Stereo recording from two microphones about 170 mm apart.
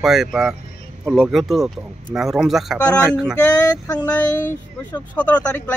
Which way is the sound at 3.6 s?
20° left (ahead or behind).